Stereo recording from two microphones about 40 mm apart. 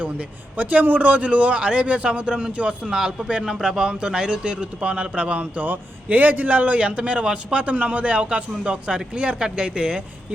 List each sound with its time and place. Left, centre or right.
0.0 s a man's voice: right
2.9 s a man's voice: centre